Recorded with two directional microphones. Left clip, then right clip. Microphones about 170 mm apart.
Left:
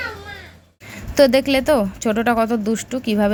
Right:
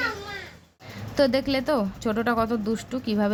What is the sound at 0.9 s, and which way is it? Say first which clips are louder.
Speech: left 8 dB; 20° left (ahead or behind).